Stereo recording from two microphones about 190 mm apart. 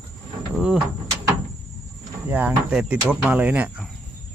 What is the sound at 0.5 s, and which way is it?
Speech, 5° right (ahead or behind).